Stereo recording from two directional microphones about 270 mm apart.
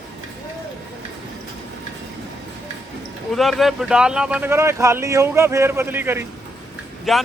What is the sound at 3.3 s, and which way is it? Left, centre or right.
A man's voice, centre.